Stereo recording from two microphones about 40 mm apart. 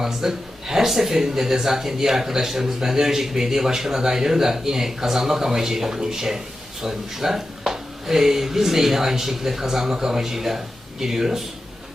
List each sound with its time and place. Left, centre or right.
0.0 s speech: centre